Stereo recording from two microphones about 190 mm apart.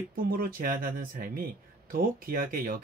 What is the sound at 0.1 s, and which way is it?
Speech, 50° right (ahead or behind).